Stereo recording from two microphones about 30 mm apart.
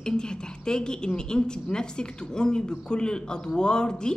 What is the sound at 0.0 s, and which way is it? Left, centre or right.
A woman's voice, left.